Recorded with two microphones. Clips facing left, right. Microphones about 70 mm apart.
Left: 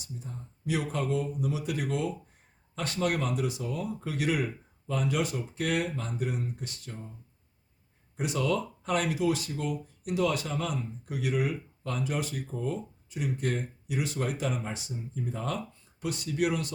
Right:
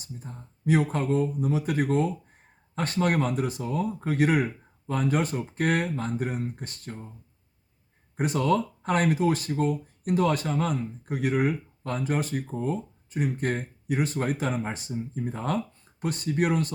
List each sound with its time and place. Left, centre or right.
0.0 s speech: right
8.1 s speech: right